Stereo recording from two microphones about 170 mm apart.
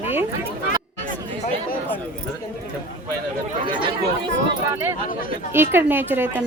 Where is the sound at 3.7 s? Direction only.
30° right (ahead or behind).